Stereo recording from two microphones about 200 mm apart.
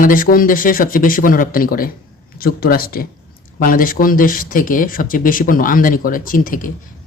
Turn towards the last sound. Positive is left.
turn(degrees=45)  # may be behind; listen again after turning